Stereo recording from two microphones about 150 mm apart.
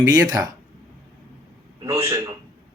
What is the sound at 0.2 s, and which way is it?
Speech, 25° right (ahead or behind).